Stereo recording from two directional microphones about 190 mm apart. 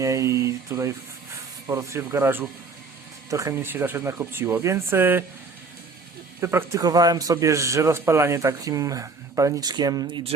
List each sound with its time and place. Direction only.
0.0 s a man's voice: 15° right (ahead or behind)
6.4 s a man's voice: 15° right (ahead or behind)